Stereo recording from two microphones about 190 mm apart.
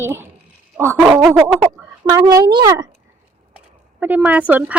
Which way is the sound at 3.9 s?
10° right (ahead or behind).